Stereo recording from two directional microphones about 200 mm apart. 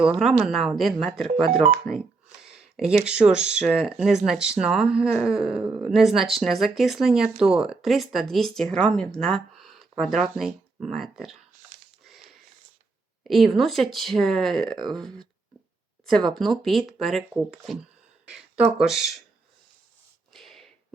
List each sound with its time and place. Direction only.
0.0 s speech: centre (ahead or behind)
1.5 s speech: 40° right (ahead or behind)
2.4 s speech: centre (ahead or behind)
13.2 s speech: centre (ahead or behind)
16.3 s speech: centre (ahead or behind)
20.3 s a sound: centre (ahead or behind)